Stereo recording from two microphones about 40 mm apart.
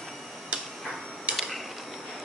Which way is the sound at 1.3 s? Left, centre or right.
Centre.